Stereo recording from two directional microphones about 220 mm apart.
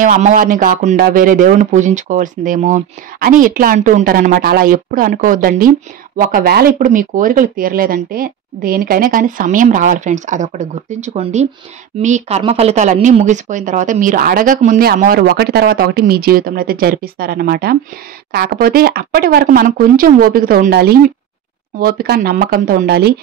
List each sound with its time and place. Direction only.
0.0 s speech: 35° right (ahead or behind)